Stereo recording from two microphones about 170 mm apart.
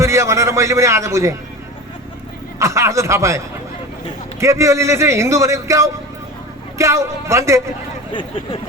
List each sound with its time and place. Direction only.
0.0 s a man's voice: 15° right (ahead or behind)
2.6 s speech: 15° right (ahead or behind)
8.1 s speech: 30° left (ahead or behind)